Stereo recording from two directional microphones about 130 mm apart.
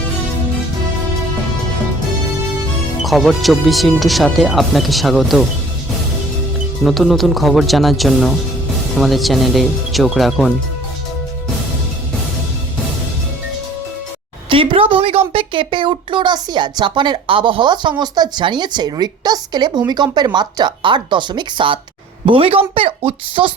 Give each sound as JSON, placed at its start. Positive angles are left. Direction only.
{"t": 3.0, "sound": "speech", "side_deg": 0}
{"t": 6.8, "sound": "speech", "side_deg": 0}
{"t": 14.5, "sound": "a woman's voice", "side_deg": -45}